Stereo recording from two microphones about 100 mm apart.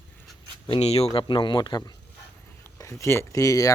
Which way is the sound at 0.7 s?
90° left.